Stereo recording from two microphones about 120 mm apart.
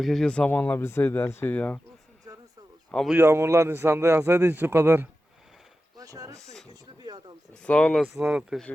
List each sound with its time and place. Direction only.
0.0 s speech: 5° left (ahead or behind)
3.1 s speech: 20° right (ahead or behind)
6.0 s speech: 25° right (ahead or behind)
6.4 s speech: 5° left (ahead or behind)
8.2 s speech: 5° right (ahead or behind)